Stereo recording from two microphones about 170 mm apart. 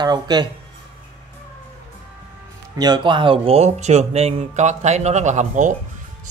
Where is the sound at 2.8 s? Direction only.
25° right (ahead or behind).